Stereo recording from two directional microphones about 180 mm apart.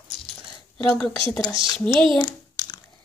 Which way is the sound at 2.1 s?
20° left (ahead or behind).